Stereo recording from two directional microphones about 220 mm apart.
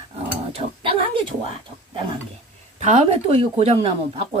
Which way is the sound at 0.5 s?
25° right (ahead or behind).